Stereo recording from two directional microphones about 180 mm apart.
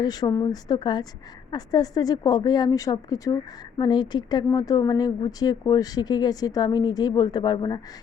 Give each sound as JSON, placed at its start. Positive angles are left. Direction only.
{"t": 0.0, "sound": "speech", "side_deg": 20}